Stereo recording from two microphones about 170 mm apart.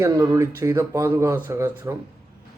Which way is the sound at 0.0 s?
20° right (ahead or behind).